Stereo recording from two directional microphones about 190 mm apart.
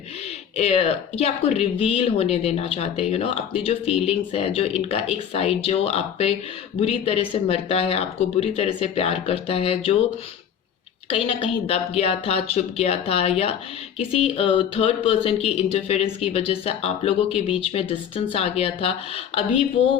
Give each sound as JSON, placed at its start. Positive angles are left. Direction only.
{"t": 0.5, "sound": "speech", "side_deg": 30}
{"t": 11.1, "sound": "speech", "side_deg": 30}